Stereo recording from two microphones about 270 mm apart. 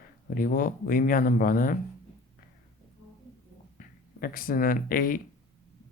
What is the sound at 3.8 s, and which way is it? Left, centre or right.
Speech, left.